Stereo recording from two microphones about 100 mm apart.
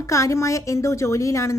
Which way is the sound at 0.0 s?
30° left (ahead or behind).